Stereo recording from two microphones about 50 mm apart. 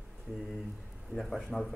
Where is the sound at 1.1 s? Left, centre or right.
Centre.